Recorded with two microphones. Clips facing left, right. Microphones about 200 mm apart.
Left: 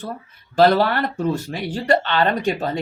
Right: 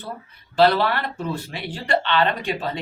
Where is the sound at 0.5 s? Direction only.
45° left (ahead or behind).